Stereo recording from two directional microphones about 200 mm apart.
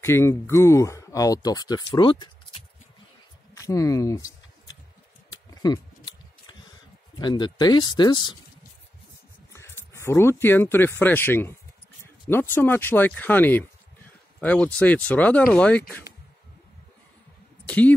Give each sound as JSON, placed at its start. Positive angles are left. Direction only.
{"t": 0.0, "sound": "speech", "side_deg": 15}
{"t": 3.5, "sound": "speech", "side_deg": 15}
{"t": 5.3, "sound": "scissors", "side_deg": 20}
{"t": 7.2, "sound": "speech", "side_deg": 20}
{"t": 9.5, "sound": "a sound", "side_deg": 15}
{"t": 10.4, "sound": "speech", "side_deg": 10}
{"t": 17.6, "sound": "speech", "side_deg": 5}